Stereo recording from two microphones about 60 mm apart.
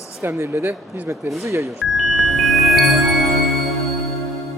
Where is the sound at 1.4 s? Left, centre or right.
Right.